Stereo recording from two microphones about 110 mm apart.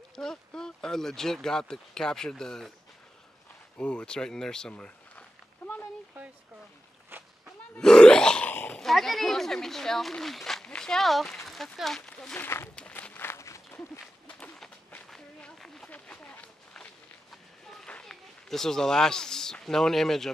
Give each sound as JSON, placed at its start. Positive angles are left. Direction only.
{"t": 0.1, "sound": "speech", "side_deg": 5}
{"t": 3.7, "sound": "speech", "side_deg": 10}
{"t": 7.7, "sound": "grunt", "side_deg": 5}
{"t": 8.7, "sound": "speech", "side_deg": 0}
{"t": 12.4, "sound": "speech", "side_deg": 20}
{"t": 12.7, "sound": "a sound", "side_deg": 10}
{"t": 15.0, "sound": "a sound", "side_deg": 5}